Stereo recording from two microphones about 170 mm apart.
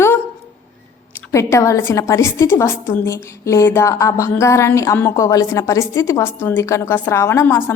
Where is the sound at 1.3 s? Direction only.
15° left (ahead or behind).